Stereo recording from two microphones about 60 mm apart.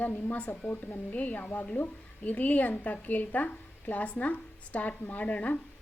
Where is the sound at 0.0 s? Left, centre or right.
Left.